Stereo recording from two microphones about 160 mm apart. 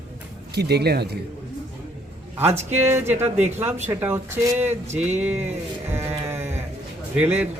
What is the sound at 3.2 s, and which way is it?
Speech, 40° right (ahead or behind).